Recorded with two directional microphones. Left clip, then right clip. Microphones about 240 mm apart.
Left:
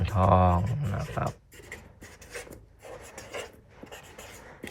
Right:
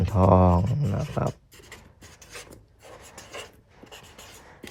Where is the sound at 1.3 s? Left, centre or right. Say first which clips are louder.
Left 1 dB; centre.